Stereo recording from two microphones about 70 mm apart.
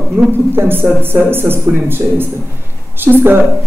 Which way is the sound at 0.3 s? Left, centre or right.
Right.